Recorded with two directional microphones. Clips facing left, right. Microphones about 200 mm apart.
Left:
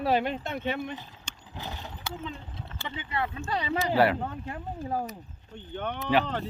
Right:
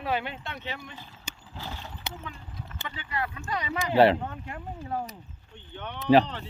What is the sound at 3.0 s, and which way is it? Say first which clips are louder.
Speech: left 2 dB; 25° left (ahead or behind).